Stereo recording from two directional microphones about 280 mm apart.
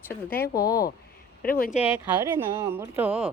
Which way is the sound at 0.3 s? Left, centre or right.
Left.